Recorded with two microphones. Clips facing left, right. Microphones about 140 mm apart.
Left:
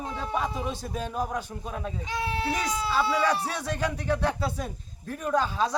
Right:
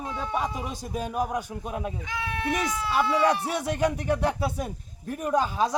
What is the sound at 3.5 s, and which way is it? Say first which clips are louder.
A man's voice: right 4 dB; 20° right (ahead or behind).